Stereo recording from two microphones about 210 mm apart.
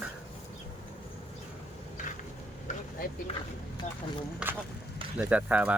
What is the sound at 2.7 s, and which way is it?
Vehicle, 35° left (ahead or behind).